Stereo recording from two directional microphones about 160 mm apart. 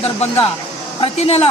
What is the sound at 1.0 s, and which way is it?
Speech, 40° left (ahead or behind).